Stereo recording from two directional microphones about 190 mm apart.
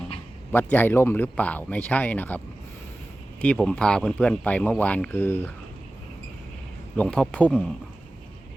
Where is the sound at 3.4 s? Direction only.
5° left (ahead or behind).